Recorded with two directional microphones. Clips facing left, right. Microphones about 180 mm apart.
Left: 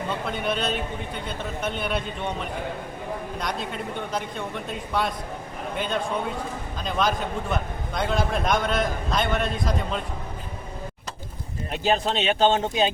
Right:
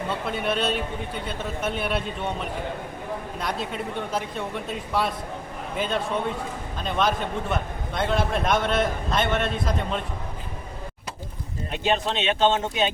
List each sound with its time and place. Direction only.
0.1 s a man's voice: 5° right (ahead or behind)
11.8 s speech: 35° left (ahead or behind)